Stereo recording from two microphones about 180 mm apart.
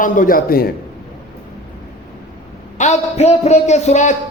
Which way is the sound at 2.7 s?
40° left (ahead or behind).